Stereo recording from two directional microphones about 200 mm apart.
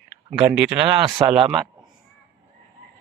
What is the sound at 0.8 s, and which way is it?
Speech, 25° right (ahead or behind).